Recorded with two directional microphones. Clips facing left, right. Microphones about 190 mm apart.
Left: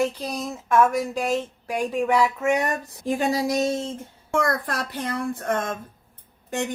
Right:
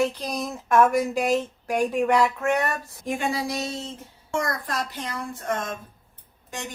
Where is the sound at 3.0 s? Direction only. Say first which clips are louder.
Left 4 dB; 35° left (ahead or behind).